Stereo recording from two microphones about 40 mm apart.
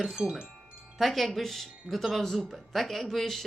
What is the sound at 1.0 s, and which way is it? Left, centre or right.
Speech, centre.